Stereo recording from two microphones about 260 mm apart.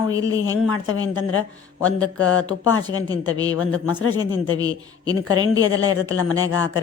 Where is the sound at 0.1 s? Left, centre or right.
Centre.